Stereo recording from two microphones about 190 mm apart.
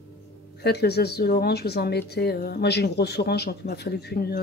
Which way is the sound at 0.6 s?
60° left (ahead or behind).